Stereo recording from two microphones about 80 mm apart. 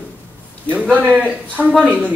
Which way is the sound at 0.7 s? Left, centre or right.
Centre.